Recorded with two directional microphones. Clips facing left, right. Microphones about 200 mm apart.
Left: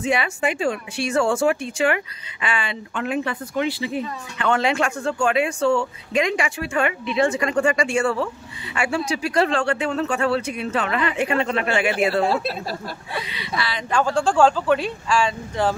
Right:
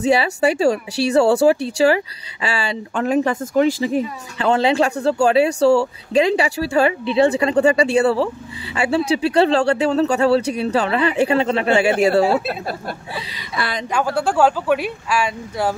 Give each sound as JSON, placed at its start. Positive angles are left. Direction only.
{"t": 0.0, "sound": "speech", "side_deg": -35}
{"t": 4.4, "sound": "speech", "side_deg": -30}
{"t": 12.4, "sound": "a woman's voice", "side_deg": -55}
{"t": 13.8, "sound": "speech", "side_deg": -10}